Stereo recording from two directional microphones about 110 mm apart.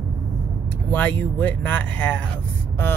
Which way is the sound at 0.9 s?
15° left (ahead or behind).